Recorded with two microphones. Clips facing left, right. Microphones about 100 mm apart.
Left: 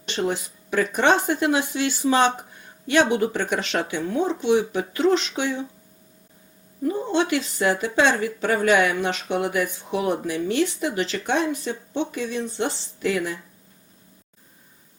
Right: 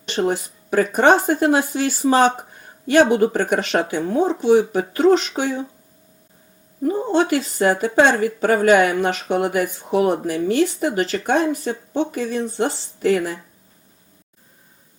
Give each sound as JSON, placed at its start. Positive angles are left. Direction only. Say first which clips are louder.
{"t": 0.1, "sound": "speech", "louder": "right 4 dB", "side_deg": -40}
{"t": 6.8, "sound": "speech", "louder": "right 4 dB", "side_deg": -35}